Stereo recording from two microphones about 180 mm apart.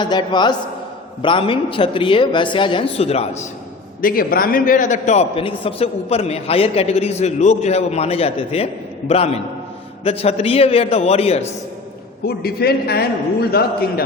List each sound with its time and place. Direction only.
0.0 s speech: 25° left (ahead or behind)
4.0 s a man's voice: 55° left (ahead or behind); by 11.4 s 35° left (ahead or behind)
12.2 s a man's voice: 60° left (ahead or behind)